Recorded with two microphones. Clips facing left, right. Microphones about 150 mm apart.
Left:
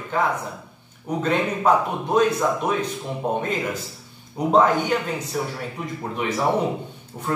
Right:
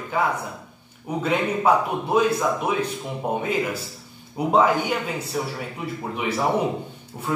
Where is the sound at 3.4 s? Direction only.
10° right (ahead or behind).